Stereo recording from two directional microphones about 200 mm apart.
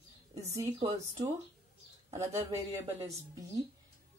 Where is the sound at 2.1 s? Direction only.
15° right (ahead or behind).